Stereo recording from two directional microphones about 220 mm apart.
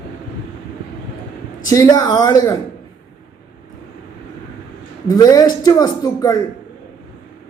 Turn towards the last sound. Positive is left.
turn(degrees=15)  # may be behind; listen again after turning